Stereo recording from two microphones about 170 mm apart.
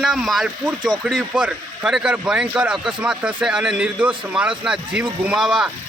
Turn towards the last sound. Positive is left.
turn(degrees=-5)  # may be behind; listen again after turning